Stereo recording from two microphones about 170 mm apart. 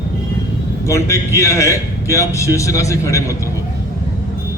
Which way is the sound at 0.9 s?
15° left (ahead or behind).